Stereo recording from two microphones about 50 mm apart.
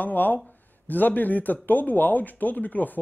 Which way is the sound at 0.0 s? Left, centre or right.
Left.